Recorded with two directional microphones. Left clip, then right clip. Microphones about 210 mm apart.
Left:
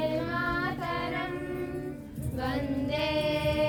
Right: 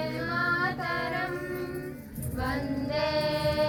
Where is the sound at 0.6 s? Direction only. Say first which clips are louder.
Right 2 dB; 20° right (ahead or behind).